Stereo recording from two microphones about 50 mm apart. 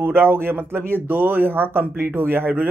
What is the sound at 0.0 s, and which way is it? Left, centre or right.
Speech, right.